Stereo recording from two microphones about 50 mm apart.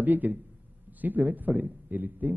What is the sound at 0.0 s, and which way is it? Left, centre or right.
A man's voice, right.